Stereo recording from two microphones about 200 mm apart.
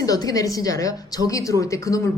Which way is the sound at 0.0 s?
20° left (ahead or behind).